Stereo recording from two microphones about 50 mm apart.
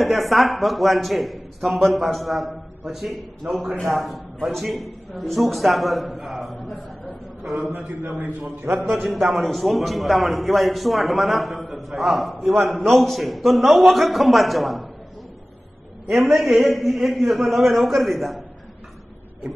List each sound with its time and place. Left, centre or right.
0.0 s a man's voice: centre
7.7 s a man's voice: right
9.0 s a man's voice: centre
16.1 s a man's voice: centre